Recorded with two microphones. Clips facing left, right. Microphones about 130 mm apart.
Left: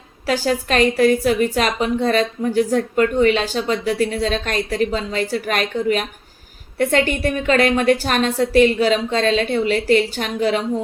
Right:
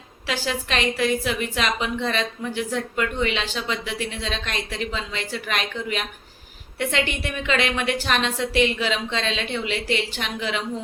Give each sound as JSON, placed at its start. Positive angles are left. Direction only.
{"t": 0.3, "sound": "a woman's voice", "side_deg": 45}